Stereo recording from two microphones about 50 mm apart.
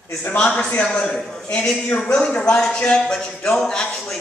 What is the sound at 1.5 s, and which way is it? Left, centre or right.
Speech, centre.